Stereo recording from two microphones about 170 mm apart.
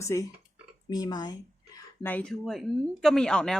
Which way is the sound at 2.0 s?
10° left (ahead or behind).